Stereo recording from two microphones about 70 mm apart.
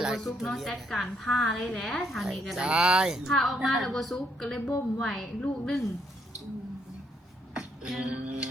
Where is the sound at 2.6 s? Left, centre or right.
Centre.